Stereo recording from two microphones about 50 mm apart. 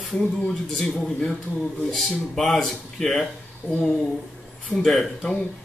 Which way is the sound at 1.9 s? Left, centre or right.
Centre.